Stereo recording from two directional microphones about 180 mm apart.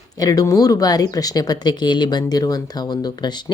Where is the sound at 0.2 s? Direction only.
20° left (ahead or behind).